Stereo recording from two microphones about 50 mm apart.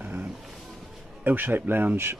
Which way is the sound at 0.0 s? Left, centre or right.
Right.